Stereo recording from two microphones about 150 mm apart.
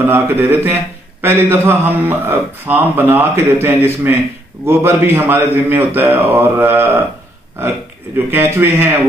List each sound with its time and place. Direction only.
0.0 s a man's voice: 15° right (ahead or behind)
8.3 s a man's voice: 15° right (ahead or behind)